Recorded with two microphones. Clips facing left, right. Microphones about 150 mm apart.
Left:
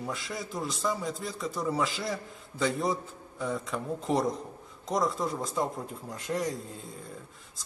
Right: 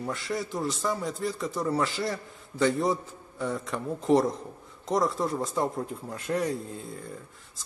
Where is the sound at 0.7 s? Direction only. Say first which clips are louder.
Right 2 dB; 5° right (ahead or behind).